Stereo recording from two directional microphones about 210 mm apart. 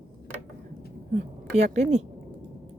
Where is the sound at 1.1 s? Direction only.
30° right (ahead or behind).